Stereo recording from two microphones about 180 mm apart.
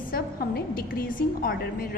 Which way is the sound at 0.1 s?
55° left (ahead or behind).